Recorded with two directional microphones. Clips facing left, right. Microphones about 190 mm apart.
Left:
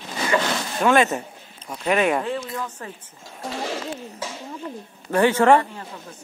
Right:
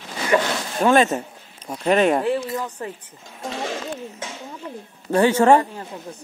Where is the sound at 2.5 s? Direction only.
20° right (ahead or behind).